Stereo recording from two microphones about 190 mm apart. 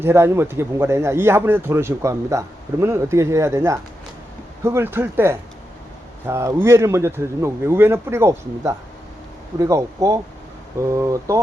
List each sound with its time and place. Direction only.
0.0 s speech: 15° right (ahead or behind)